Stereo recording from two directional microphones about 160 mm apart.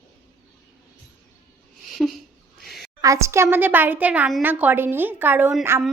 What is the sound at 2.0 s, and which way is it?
Speech, centre (ahead or behind).